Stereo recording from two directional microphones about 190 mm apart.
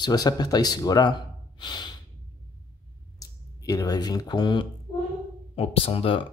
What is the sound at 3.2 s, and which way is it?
Speech, 20° left (ahead or behind).